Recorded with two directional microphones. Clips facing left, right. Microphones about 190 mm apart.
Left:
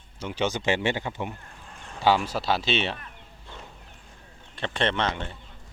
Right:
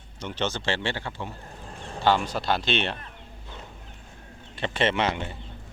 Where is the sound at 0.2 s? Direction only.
10° left (ahead or behind).